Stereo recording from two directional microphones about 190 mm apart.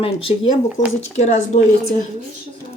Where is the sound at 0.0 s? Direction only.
30° left (ahead or behind).